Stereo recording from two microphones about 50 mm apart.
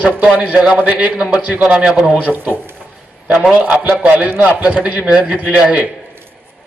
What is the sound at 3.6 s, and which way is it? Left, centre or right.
Speech, right.